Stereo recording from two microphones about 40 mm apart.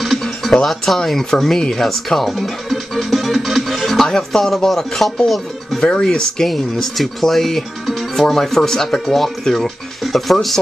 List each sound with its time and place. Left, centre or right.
0.7 s speech: centre
5.8 s speech: centre
6.4 s speech: centre